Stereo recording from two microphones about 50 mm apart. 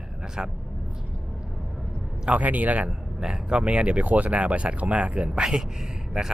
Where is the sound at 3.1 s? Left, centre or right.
Centre.